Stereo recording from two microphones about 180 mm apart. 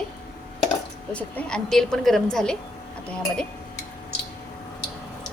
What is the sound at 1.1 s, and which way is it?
Speech, 5° left (ahead or behind).